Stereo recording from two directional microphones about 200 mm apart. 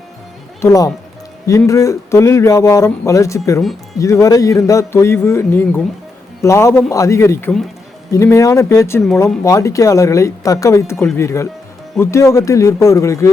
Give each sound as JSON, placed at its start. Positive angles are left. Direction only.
{"t": 0.6, "sound": "speech", "side_deg": 15}